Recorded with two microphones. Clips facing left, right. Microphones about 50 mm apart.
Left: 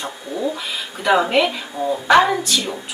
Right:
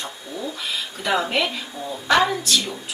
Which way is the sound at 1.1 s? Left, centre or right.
Centre.